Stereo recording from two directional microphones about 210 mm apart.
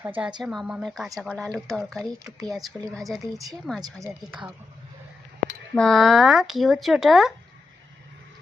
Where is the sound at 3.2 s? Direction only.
15° right (ahead or behind).